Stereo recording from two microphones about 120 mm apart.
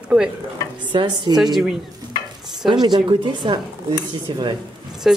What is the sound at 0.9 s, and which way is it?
Speech, 40° right (ahead or behind).